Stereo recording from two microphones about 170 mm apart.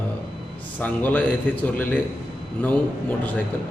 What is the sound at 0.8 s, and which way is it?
A man's voice, 10° left (ahead or behind).